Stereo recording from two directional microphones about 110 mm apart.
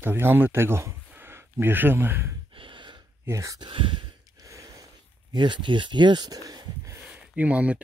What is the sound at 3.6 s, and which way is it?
Sigh, 50° right (ahead or behind).